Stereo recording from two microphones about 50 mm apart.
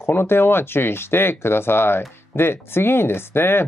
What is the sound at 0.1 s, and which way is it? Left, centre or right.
Speech, left.